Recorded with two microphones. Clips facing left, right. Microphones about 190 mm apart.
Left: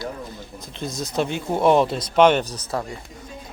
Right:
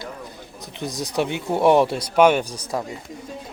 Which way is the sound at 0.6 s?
15° right (ahead or behind).